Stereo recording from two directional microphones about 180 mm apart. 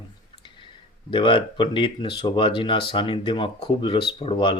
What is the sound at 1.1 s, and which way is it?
Speech, 30° left (ahead or behind).